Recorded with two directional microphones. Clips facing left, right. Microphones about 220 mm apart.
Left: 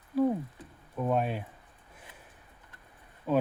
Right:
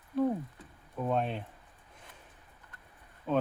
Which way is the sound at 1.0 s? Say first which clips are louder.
Left 2 dB; 5° left (ahead or behind).